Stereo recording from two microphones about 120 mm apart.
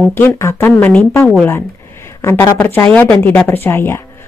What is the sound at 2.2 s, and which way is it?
A woman's voice, 25° left (ahead or behind).